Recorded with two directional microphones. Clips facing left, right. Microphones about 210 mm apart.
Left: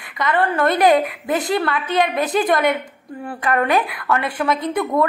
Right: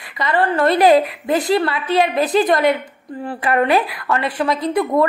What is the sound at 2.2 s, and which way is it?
Speech, 25° right (ahead or behind).